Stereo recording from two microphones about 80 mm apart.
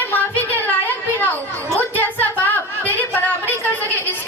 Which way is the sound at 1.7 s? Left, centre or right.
Left.